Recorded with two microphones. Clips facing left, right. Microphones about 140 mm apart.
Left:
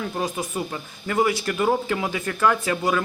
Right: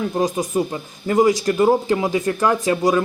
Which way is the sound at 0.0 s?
25° right (ahead or behind).